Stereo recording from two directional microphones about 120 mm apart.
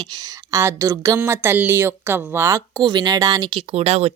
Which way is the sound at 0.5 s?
25° right (ahead or behind).